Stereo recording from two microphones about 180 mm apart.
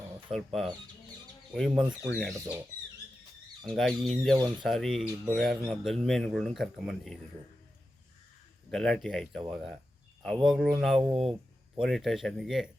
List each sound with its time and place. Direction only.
0.3 s speech: centre (ahead or behind)
3.8 s speech: centre (ahead or behind)
8.7 s speech: centre (ahead or behind)
11.0 s speech: 30° right (ahead or behind)
11.8 s speech: centre (ahead or behind)